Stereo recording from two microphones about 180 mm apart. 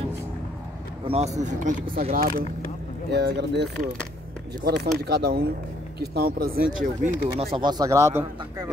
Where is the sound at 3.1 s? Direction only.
70° right (ahead or behind).